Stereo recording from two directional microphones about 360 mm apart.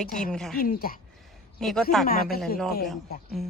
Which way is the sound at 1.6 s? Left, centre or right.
Centre.